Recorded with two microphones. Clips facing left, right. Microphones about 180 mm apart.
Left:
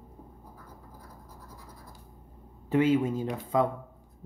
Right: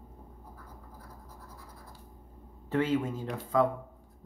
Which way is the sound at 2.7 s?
15° left (ahead or behind).